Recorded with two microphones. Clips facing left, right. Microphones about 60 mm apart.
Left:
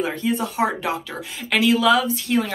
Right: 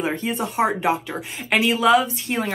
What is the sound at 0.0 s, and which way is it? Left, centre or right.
Speech, right.